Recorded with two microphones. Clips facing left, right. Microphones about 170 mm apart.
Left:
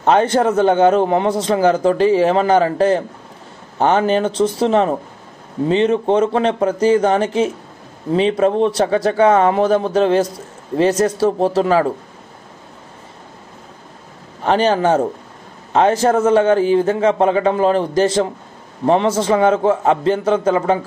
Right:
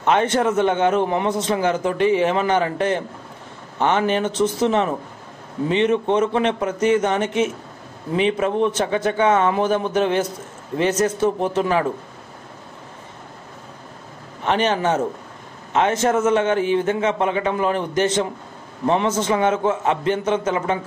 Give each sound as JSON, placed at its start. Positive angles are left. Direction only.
{"t": 0.0, "sound": "a man's voice", "side_deg": 35}
{"t": 14.4, "sound": "a man's voice", "side_deg": 35}